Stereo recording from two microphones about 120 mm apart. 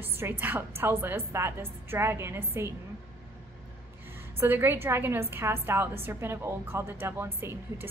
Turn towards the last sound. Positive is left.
turn(degrees=-20)  # may be behind; listen again after turning